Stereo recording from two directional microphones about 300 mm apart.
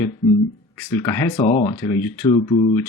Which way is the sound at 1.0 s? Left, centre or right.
Centre.